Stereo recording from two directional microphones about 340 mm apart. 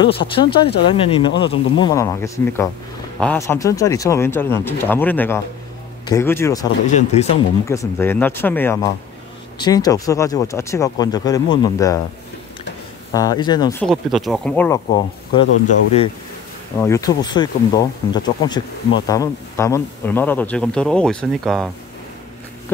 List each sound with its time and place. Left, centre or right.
0.0 s speech: centre
7.6 s speech: centre
13.1 s speech: centre
16.7 s speech: centre